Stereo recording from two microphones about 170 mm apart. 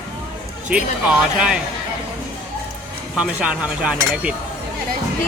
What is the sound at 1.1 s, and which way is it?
Cutlery, 5° right (ahead or behind).